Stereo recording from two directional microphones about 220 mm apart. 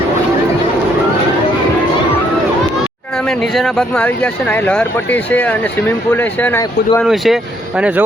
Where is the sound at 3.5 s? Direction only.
Centre (ahead or behind).